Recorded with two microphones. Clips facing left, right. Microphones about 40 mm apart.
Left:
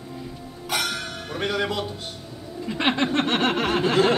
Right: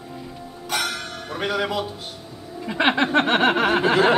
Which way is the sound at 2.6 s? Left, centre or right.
Centre.